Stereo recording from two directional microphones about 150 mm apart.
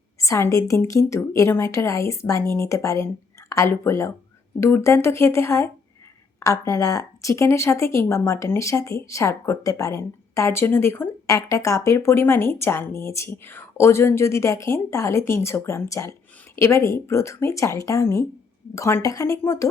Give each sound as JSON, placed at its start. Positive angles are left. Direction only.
{"t": 0.2, "sound": "a woman's voice", "side_deg": 20}